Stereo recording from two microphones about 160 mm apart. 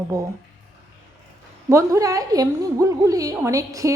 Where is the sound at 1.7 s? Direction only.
20° right (ahead or behind).